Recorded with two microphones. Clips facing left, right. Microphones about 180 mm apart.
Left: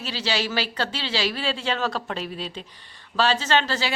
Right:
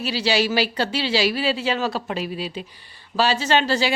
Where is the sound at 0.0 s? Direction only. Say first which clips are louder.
Right 6 dB; 10° right (ahead or behind).